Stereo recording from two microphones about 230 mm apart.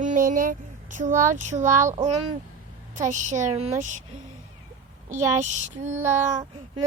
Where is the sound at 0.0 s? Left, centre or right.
Right.